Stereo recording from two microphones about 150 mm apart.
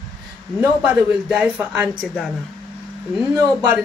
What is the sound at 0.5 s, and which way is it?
Speech, 10° right (ahead or behind).